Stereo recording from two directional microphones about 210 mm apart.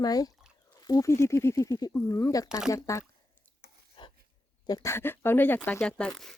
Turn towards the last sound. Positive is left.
turn(degrees=5)  # may be behind; listen again after turning